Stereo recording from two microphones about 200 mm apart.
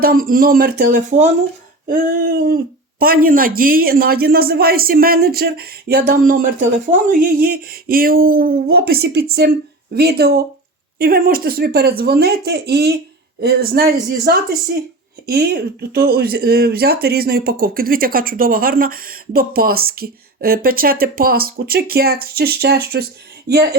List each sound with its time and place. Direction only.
0.0 s speech: 45° right (ahead or behind)